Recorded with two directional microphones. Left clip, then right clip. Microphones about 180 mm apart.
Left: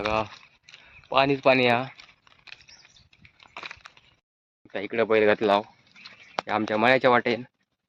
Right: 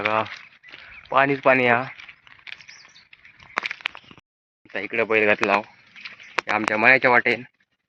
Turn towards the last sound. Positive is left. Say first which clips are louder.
# right 3 dB
turn(degrees=15)  # may be behind; listen again after turning